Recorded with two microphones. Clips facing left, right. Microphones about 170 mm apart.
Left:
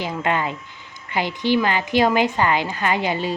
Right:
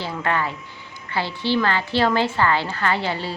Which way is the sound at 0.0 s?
15° left (ahead or behind).